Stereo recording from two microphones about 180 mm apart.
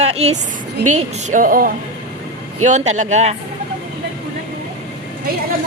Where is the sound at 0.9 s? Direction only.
45° right (ahead or behind).